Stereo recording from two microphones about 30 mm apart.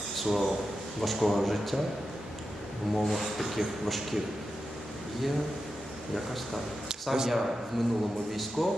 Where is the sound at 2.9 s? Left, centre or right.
Centre.